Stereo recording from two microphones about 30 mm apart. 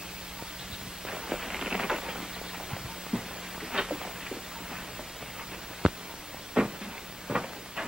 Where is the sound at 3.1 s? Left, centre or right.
Right.